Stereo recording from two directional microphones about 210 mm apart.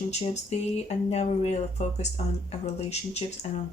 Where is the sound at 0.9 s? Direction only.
30° left (ahead or behind).